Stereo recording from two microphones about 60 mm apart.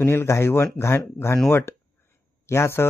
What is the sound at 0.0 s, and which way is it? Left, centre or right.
Speech, left.